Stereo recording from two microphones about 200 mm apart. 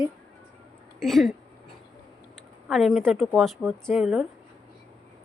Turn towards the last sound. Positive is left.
turn(degrees=-5)  # may be behind; listen again after turning